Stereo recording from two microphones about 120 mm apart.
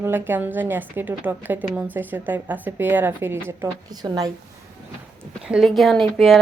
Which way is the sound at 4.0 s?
35° right (ahead or behind).